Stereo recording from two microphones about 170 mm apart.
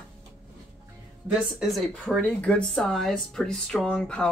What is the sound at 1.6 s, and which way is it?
Speech, centre (ahead or behind).